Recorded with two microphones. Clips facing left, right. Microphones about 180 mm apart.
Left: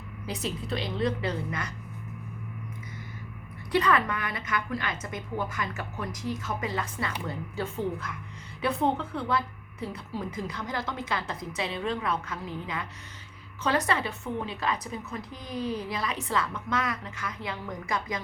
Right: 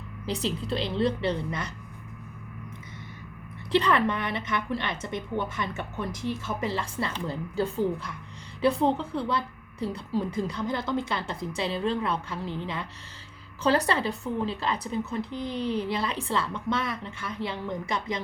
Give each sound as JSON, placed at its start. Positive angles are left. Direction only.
{"t": 0.3, "sound": "a woman's voice", "side_deg": -30}
{"t": 3.7, "sound": "a woman's voice", "side_deg": -30}